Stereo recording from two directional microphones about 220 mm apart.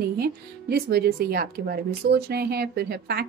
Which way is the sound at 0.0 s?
45° right (ahead or behind).